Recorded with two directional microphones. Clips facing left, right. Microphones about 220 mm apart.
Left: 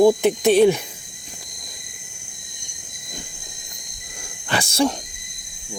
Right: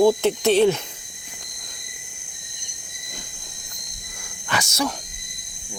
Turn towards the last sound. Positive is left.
turn(degrees=30)  # may be behind; listen again after turning